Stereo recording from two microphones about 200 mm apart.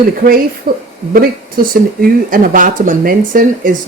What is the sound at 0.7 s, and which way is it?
Speech, 50° right (ahead or behind).